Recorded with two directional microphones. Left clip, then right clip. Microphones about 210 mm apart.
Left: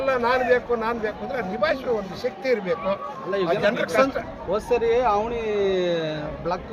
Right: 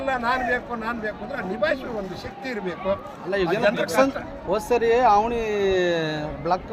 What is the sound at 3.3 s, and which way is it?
A man's voice, 45° right (ahead or behind).